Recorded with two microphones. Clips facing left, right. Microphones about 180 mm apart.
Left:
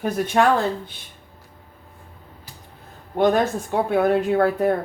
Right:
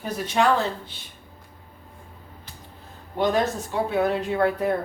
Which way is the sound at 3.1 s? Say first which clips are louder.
Left 4 dB; 55° left (ahead or behind).